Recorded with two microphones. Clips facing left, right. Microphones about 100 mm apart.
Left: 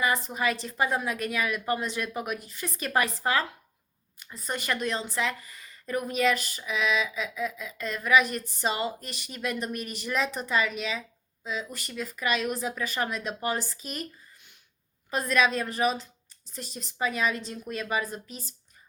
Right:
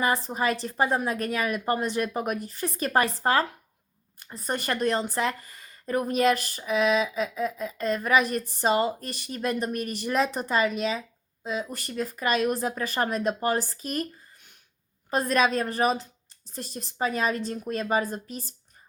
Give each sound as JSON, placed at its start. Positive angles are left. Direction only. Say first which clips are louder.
{"t": 0.0, "sound": "speech", "louder": "right 2 dB", "side_deg": -35}